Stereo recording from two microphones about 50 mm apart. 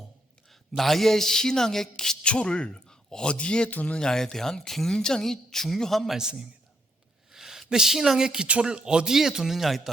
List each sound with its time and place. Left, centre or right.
0.8 s speech: centre
2.2 s a man's voice: left
3.7 s speech: left
3.9 s speech: centre
6.1 s speech: centre